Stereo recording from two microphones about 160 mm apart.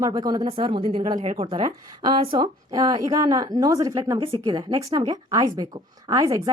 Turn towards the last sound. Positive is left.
turn(degrees=-25)  # may be behind; listen again after turning